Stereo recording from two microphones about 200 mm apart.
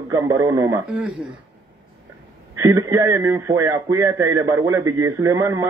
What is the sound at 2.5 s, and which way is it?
A man's voice, 15° right (ahead or behind).